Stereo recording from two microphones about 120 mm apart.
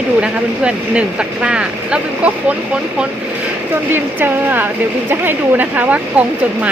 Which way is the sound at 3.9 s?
15° right (ahead or behind).